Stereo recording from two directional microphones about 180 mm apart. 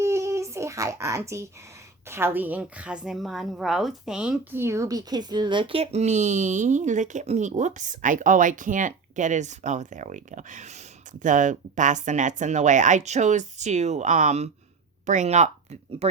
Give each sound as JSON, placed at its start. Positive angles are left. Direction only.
{"t": 0.0, "sound": "child singing", "side_deg": -15}
{"t": 2.0, "sound": "a woman's voice", "side_deg": -15}